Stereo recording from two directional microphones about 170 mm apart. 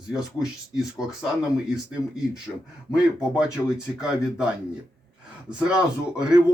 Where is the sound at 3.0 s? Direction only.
5° right (ahead or behind).